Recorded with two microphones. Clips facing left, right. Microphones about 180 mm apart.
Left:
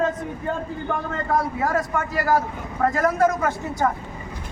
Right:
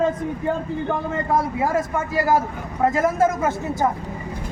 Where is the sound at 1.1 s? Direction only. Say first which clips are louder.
Even; 20° right (ahead or behind).